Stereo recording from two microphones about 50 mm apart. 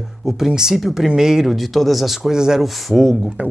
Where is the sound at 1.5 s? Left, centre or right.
Centre.